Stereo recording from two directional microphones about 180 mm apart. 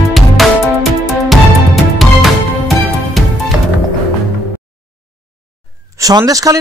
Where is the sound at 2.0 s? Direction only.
Centre (ahead or behind).